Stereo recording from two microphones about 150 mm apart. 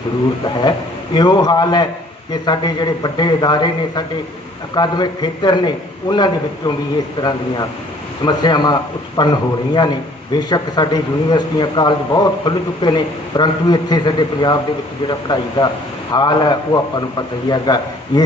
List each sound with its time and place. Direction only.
1.1 s a man's voice: 30° left (ahead or behind)